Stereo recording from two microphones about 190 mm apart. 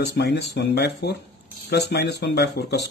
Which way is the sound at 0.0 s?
60° left (ahead or behind).